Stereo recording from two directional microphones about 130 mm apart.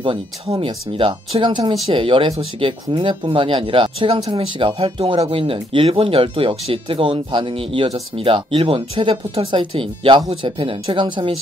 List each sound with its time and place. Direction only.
0.0 s speech: 40° right (ahead or behind)